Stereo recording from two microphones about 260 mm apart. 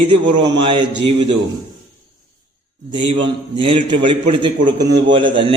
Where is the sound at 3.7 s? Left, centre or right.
Right.